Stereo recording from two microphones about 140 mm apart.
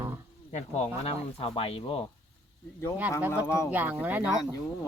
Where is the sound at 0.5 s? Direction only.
50° left (ahead or behind).